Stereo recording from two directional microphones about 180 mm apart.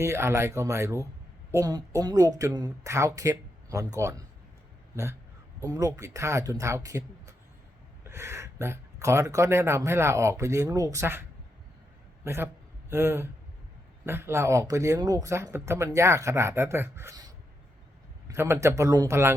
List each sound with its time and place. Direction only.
0.0 s speech: 15° right (ahead or behind)
5.5 s a man's voice: 15° right (ahead or behind)